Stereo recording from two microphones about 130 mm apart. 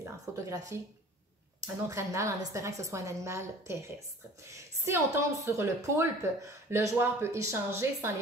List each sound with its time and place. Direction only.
0.0 s a woman's voice: 20° right (ahead or behind)
1.9 s a woman's voice: 25° right (ahead or behind)